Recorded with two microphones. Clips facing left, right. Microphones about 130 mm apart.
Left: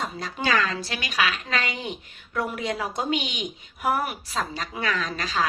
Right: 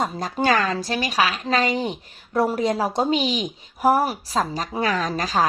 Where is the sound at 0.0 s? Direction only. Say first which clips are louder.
Right 6 dB; 40° right (ahead or behind).